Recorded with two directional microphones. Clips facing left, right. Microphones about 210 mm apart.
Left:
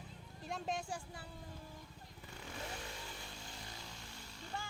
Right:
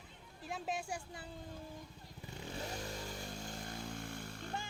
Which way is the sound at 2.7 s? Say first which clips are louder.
Right 5 dB; 40° right (ahead or behind).